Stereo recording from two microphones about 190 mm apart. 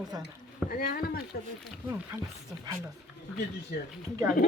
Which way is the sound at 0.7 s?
50° left (ahead or behind).